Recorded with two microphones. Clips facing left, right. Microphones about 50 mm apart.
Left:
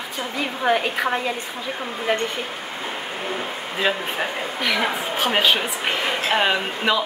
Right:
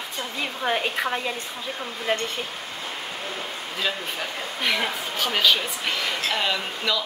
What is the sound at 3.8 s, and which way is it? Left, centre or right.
Speech, left.